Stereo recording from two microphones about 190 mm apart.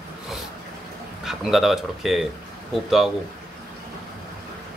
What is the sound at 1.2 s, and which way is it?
Speech, centre (ahead or behind).